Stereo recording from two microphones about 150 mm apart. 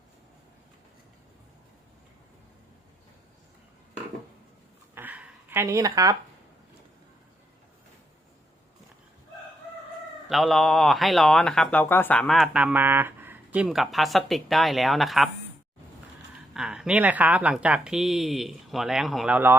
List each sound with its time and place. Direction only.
4.9 s a sound: 10° right (ahead or behind)
10.2 s speech: centre (ahead or behind)
16.6 s speech: 5° right (ahead or behind)